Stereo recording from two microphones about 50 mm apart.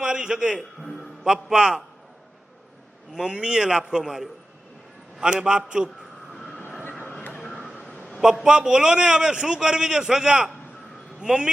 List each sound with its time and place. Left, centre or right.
0.0 s a man's voice: centre
0.8 s a sound: centre
1.2 s a man's voice: centre
3.1 s a man's voice: centre
6.3 s train: centre
7.3 s a sound: left
8.4 s a man's voice: centre